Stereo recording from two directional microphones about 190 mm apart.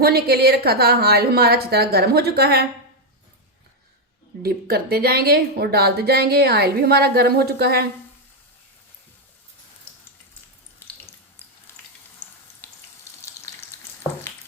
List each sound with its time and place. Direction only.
0.0 s a woman's voice: 55° right (ahead or behind)
4.4 s a woman's voice: 55° right (ahead or behind)
12.6 s water: 5° left (ahead or behind)